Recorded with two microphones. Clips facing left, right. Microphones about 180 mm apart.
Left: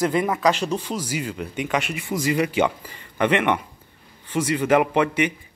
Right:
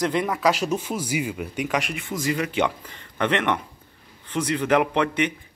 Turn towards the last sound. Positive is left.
turn(degrees=5)  # may be behind; listen again after turning